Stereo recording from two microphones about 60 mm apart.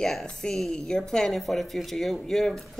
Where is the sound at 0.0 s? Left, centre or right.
Centre.